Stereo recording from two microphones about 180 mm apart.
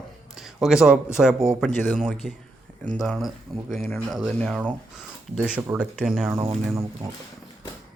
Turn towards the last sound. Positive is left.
turn(degrees=-15)  # may be behind; listen again after turning